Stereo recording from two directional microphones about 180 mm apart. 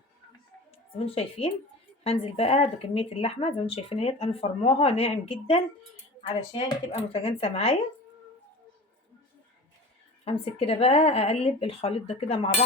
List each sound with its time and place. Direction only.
0.9 s speech: 30° left (ahead or behind)
10.2 s speech: 30° left (ahead or behind)